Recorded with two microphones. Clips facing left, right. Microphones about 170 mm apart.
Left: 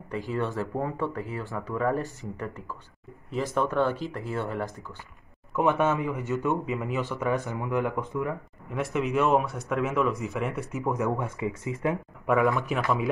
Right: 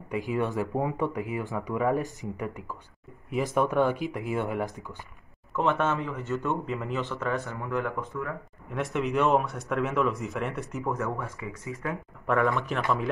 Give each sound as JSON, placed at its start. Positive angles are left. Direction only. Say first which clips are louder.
{"t": 0.1, "sound": "speech", "louder": "right 1 dB", "side_deg": -15}
{"t": 5.5, "sound": "speech", "louder": "left 2 dB", "side_deg": 10}
{"t": 8.6, "sound": "speech", "louder": "left 1 dB", "side_deg": 0}
{"t": 10.9, "sound": "speech", "louder": "left 4 dB", "side_deg": 15}
{"t": 12.3, "sound": "speech", "louder": "left 2 dB", "side_deg": 5}